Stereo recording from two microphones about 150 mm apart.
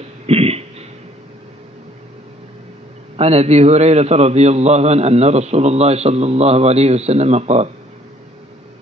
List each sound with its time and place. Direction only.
0.3 s throat clearing: 40° right (ahead or behind)
3.2 s a man's voice: 45° right (ahead or behind)